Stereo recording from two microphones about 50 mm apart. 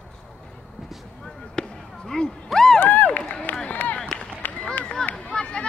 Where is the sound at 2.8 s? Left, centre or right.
Left.